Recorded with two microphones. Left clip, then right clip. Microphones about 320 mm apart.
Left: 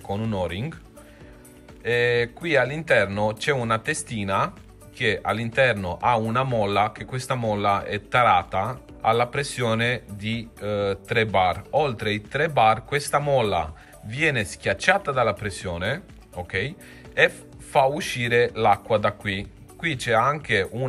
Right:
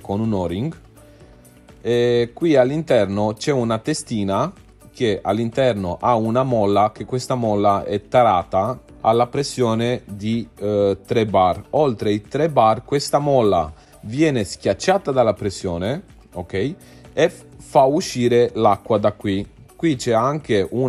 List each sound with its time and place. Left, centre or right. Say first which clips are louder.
0.2 s speech: right 5 dB; centre
1.9 s speech: right 4 dB; centre